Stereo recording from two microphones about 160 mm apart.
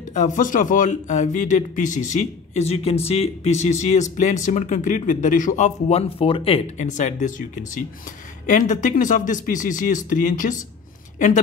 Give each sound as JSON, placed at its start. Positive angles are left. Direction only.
{"t": 0.1, "sound": "speech", "side_deg": 50}
{"t": 6.8, "sound": "speech", "side_deg": 50}